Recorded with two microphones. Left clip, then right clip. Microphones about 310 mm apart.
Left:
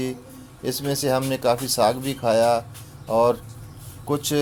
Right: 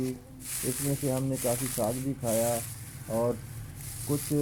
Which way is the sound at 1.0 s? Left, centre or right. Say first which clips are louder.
Left 10 dB; left.